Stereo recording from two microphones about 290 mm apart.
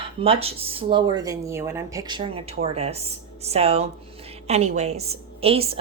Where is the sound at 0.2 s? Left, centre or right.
Centre.